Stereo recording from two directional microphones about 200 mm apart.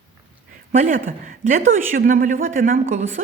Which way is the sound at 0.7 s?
45° right (ahead or behind).